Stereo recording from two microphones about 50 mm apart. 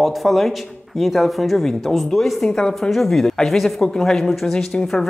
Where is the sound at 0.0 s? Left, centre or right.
Centre.